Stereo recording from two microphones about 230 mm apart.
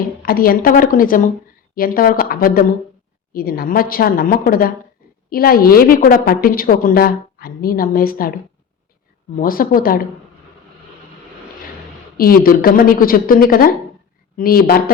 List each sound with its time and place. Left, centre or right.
0.2 s a woman's voice: left
9.3 s a woman's voice: left
12.1 s a woman's voice: left